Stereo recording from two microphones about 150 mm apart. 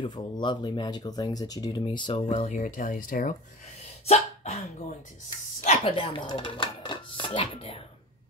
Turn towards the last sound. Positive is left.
turn(degrees=35)  # may be behind; listen again after turning